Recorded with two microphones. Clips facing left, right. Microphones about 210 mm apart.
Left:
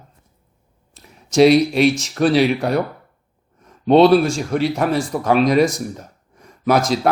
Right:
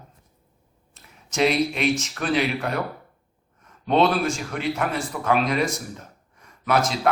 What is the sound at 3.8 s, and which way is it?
A man's voice, 35° left (ahead or behind).